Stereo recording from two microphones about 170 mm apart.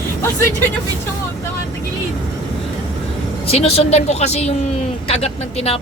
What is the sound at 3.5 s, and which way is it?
Speech, 35° left (ahead or behind).